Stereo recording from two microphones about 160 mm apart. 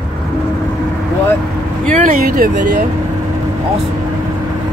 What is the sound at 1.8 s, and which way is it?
Speech, 60° right (ahead or behind).